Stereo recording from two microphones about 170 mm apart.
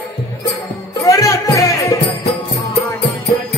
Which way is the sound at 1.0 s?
20° left (ahead or behind).